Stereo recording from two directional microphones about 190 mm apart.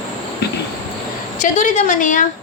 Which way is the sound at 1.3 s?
40° left (ahead or behind).